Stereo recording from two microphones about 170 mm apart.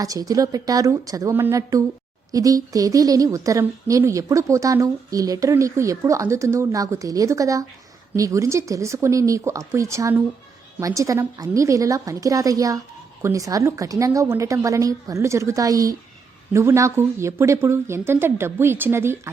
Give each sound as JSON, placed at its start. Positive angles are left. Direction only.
{"t": 0.0, "sound": "a woman's voice", "side_deg": -20}